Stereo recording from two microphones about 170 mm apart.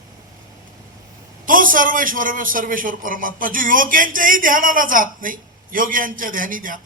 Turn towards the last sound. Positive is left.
turn(degrees=-55)  # may be behind; listen again after turning